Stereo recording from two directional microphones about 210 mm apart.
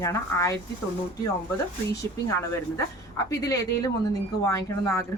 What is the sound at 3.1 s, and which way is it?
A woman's voice, 20° left (ahead or behind).